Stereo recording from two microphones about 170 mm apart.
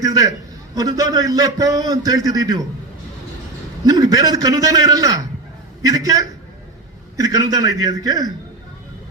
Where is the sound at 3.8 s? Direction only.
20° right (ahead or behind).